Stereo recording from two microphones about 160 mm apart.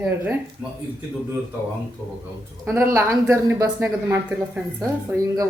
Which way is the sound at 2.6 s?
15° right (ahead or behind).